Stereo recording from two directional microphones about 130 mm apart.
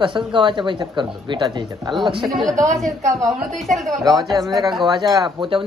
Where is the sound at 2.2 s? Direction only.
Centre (ahead or behind).